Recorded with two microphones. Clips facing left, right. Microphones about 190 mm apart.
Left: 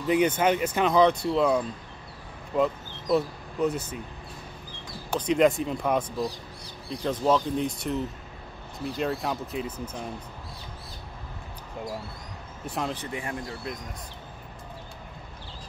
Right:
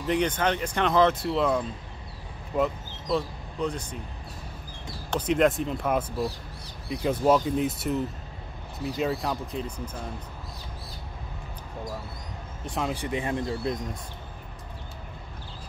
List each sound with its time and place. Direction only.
0.1 s speech: 10° left (ahead or behind)
5.2 s speech: centre (ahead or behind)
12.6 s speech: centre (ahead or behind)
12.9 s speech: 15° right (ahead or behind)